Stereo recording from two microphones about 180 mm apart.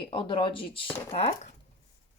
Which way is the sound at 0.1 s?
30° left (ahead or behind).